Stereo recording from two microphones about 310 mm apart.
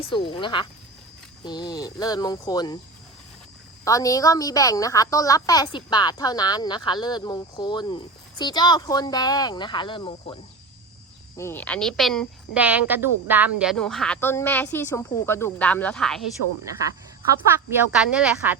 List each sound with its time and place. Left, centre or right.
0.0 s a woman's voice: centre
3.8 s a woman's voice: centre
11.3 s speech: centre
17.7 s speech: centre